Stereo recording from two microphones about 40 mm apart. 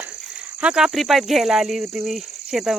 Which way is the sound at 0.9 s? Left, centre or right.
Centre.